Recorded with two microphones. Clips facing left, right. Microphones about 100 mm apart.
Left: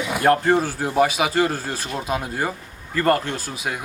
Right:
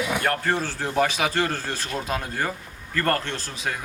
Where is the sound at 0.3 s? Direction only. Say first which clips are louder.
Left 7 dB; 15° left (ahead or behind).